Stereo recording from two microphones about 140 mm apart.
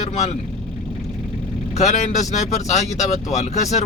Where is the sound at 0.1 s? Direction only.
50° left (ahead or behind).